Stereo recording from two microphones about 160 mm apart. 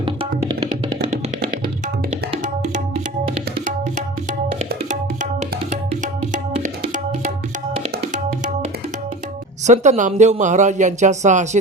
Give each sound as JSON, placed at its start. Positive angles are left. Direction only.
{"t": 0.0, "sound": "music", "side_deg": -35}
{"t": 5.9, "sound": "music", "side_deg": -50}
{"t": 9.6, "sound": "speech", "side_deg": -45}